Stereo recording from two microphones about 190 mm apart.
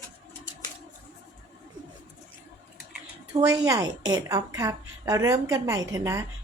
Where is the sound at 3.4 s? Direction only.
15° right (ahead or behind).